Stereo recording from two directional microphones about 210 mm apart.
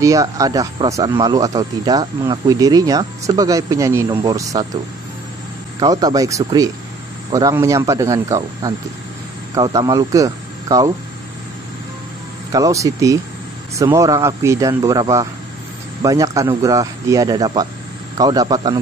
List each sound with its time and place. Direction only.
0.0 s speech: 15° right (ahead or behind)
5.8 s speech: 15° right (ahead or behind)
12.5 s a man's voice: 15° right (ahead or behind)